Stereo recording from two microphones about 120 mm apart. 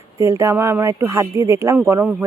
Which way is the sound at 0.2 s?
25° right (ahead or behind).